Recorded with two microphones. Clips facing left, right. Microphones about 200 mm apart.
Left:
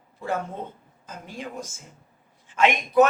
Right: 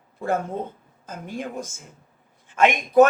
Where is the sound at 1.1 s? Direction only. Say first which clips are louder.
Right 5 dB; 50° right (ahead or behind).